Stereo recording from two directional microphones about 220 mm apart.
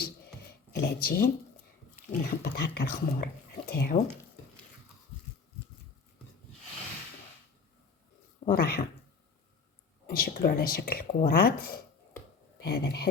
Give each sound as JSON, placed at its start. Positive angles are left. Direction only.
{"t": 0.0, "sound": "a sound", "side_deg": 45}
{"t": 2.2, "sound": "speech", "side_deg": 45}
{"t": 8.4, "sound": "speech", "side_deg": 45}
{"t": 10.1, "sound": "speech", "side_deg": 40}